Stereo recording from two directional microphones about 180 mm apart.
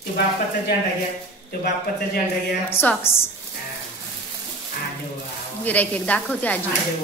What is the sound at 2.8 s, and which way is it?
Speech, 10° left (ahead or behind).